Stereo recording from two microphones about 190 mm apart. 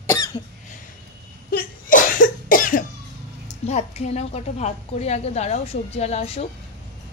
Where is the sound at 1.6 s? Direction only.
45° left (ahead or behind).